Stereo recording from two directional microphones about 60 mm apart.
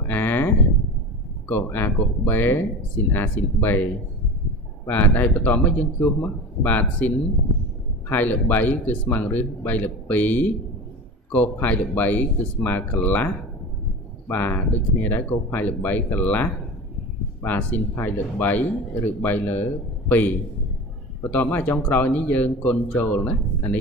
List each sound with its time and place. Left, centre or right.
0.0 s a sound: left
1.5 s speech: left
4.8 s speech: left
14.3 s speech: left